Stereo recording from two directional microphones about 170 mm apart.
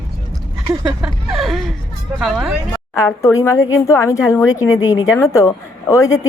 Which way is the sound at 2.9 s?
20° left (ahead or behind).